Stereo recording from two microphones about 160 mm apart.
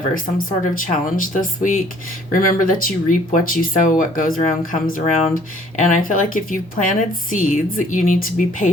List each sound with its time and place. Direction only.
0.1 s speech: 65° left (ahead or behind)